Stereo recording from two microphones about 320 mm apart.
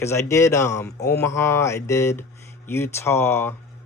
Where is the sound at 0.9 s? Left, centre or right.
Left.